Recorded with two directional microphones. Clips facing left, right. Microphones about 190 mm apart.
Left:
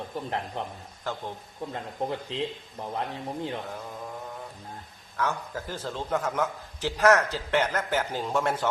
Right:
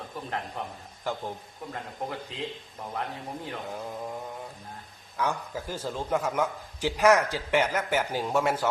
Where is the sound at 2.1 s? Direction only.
25° left (ahead or behind).